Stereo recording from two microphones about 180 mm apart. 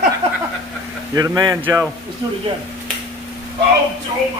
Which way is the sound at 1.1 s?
20° right (ahead or behind).